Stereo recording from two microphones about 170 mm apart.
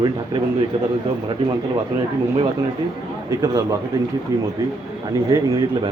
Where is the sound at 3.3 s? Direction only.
20° right (ahead or behind).